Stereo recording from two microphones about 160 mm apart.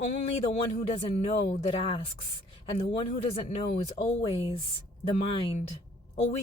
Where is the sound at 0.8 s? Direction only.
45° left (ahead or behind).